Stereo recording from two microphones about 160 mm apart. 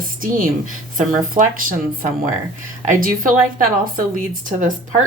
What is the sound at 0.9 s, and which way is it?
Speech, 55° right (ahead or behind).